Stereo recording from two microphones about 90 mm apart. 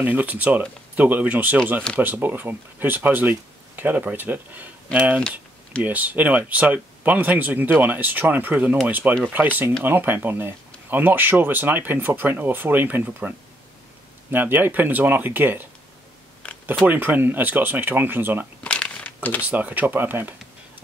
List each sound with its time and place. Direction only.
0.0 s speech: 20° right (ahead or behind)
14.3 s speech: 20° right (ahead or behind)
16.4 s a sound: 10° left (ahead or behind)
16.8 s speech: 20° right (ahead or behind)
18.6 s a sound: 15° left (ahead or behind)
19.4 s speech: 20° right (ahead or behind)